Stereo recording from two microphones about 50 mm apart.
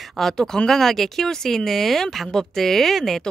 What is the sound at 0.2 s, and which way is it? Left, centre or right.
Speech, centre.